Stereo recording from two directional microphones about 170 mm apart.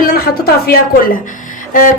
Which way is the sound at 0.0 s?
65° left (ahead or behind).